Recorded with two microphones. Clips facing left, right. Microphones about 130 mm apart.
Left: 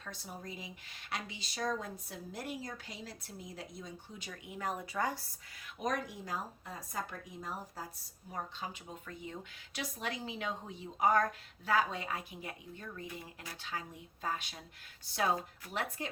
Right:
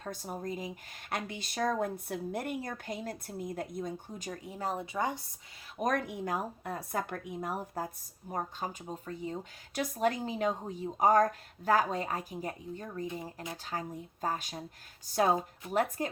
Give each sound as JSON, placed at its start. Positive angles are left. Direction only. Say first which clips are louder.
{"t": 0.0, "sound": "speech", "louder": "right 8 dB", "side_deg": -45}
{"t": 5.8, "sound": "speech", "louder": "right 5 dB", "side_deg": -55}
{"t": 8.3, "sound": "speech", "louder": "right 5 dB", "side_deg": -45}